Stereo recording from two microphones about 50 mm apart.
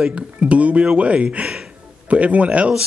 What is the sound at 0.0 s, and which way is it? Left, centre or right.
Speech, right.